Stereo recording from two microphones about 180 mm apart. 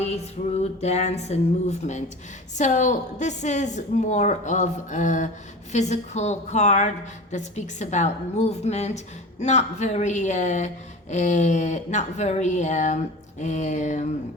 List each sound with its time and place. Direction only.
0.0 s a woman's voice: 35° left (ahead or behind)